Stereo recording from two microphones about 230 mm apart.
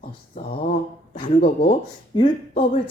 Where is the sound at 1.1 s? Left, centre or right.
Left.